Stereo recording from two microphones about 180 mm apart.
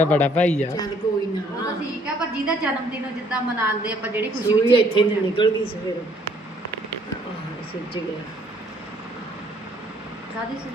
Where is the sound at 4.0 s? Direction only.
10° right (ahead or behind).